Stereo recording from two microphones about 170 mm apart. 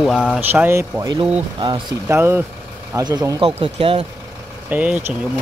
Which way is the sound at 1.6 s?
25° right (ahead or behind).